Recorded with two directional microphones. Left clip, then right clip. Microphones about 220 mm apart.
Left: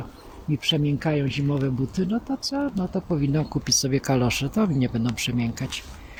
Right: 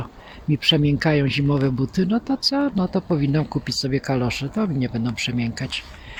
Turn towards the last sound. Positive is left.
turn(degrees=-5)  # may be behind; listen again after turning